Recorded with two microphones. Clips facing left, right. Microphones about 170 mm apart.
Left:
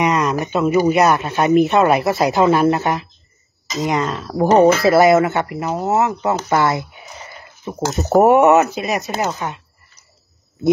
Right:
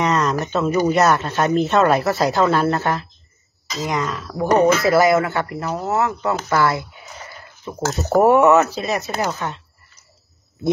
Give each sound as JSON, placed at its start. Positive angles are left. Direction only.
{"t": 0.0, "sound": "speech", "side_deg": 10}